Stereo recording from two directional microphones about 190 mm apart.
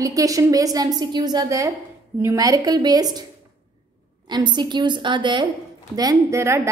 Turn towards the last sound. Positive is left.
turn(degrees=-15)  # may be behind; listen again after turning